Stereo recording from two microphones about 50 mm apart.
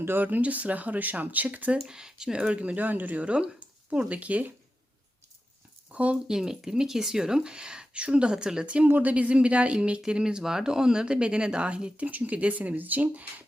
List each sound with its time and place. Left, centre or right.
0.0 s speech: right
1.8 s speech: centre; by 4.5 s right
5.9 s speech: right
6.3 s speech: centre
8.9 s speech: right